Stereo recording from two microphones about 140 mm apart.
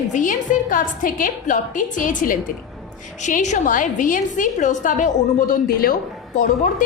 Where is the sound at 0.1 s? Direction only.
65° left (ahead or behind).